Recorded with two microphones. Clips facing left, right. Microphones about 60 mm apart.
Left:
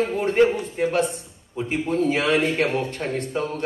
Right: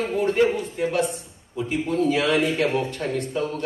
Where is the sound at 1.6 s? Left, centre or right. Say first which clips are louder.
Even; left.